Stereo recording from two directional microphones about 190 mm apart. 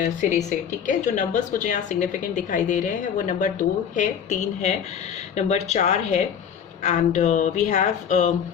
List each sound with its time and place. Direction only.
0.0 s a woman's voice: 40° left (ahead or behind)